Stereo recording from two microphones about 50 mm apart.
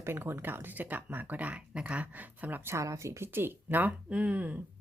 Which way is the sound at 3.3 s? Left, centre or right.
Right.